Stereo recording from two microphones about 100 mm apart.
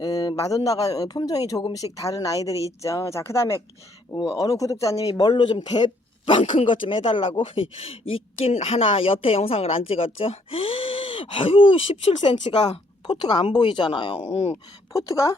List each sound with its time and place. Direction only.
0.0 s a man's voice: 40° left (ahead or behind); by 12.4 s 80° left
13.1 s speech: 50° left (ahead or behind)
14.5 s a man's voice: 30° left (ahead or behind)